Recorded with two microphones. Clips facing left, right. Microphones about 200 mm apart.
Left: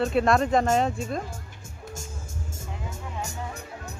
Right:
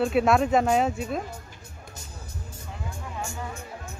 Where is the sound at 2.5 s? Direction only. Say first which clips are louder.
Even; 40° left (ahead or behind).